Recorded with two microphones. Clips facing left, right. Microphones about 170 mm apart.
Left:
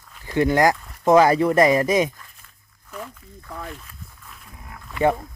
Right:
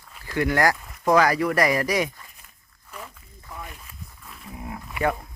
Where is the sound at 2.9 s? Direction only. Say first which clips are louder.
Left 5 dB; 5° right (ahead or behind).